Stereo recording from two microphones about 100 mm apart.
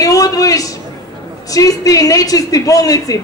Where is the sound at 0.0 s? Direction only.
35° left (ahead or behind).